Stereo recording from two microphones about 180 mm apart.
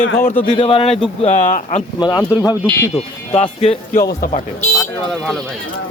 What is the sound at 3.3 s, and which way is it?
Speech, 35° left (ahead or behind).